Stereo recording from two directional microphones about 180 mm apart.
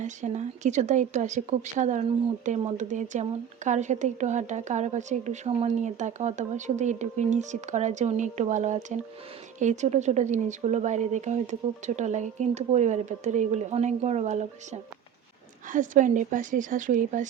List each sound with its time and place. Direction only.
0.0 s a woman's voice: 40° right (ahead or behind)